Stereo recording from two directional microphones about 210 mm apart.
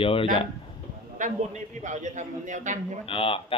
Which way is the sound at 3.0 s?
25° left (ahead or behind).